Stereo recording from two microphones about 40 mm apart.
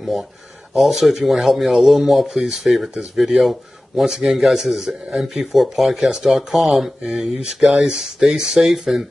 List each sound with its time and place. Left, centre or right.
0.0 s speech: centre
6.0 s speech: centre
6.3 s speech: centre